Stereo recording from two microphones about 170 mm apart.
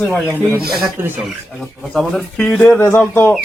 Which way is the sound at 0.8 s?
15° right (ahead or behind).